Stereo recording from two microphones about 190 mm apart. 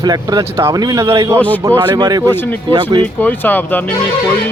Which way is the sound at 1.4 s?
10° left (ahead or behind).